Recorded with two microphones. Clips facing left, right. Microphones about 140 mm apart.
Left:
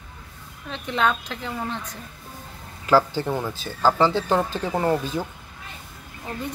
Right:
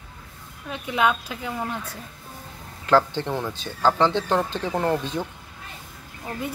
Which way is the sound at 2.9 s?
5° left (ahead or behind).